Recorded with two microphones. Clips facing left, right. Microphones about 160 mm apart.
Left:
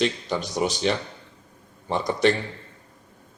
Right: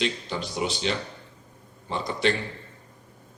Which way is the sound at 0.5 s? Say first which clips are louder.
Left 4 dB; 45° left (ahead or behind).